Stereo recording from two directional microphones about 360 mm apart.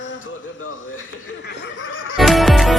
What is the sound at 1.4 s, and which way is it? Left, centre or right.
Snicker, left.